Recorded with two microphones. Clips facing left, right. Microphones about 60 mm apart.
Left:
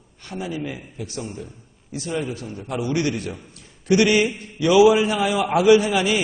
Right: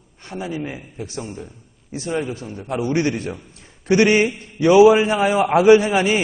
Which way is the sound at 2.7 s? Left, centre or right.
Right.